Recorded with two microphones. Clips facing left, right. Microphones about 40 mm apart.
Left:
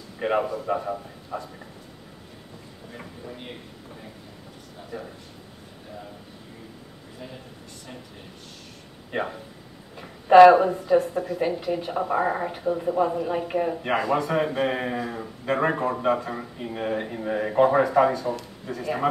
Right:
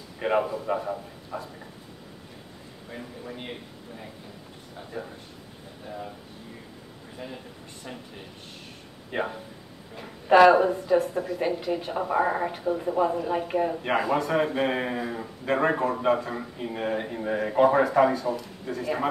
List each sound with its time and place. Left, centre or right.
0.2 s a woman's voice: centre
3.3 s speech: centre
7.2 s speech: centre
9.1 s a woman's voice: centre